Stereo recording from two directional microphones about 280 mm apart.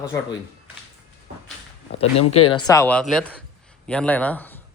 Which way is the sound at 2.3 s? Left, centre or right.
Left.